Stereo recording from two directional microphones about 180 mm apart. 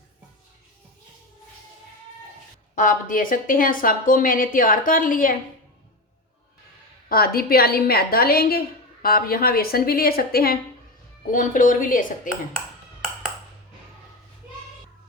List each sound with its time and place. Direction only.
2.7 s speech: 50° left (ahead or behind)
7.1 s a woman's voice: 55° left (ahead or behind)